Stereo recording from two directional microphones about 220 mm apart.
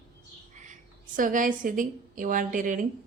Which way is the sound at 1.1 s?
35° right (ahead or behind).